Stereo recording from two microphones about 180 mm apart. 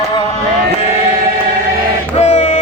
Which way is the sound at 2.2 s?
40° left (ahead or behind).